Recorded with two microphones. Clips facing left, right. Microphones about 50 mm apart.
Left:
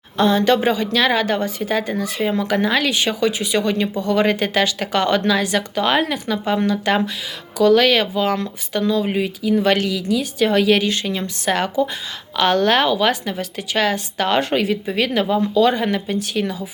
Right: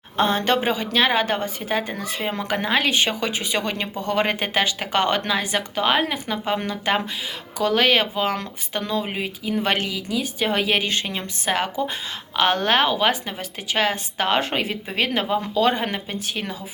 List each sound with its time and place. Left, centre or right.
0.2 s a woman's voice: right